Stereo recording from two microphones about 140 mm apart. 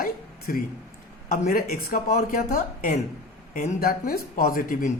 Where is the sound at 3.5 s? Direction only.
70° left (ahead or behind); by 4.9 s 90° left.